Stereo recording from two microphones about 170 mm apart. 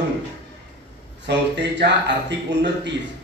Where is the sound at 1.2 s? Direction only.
90° right.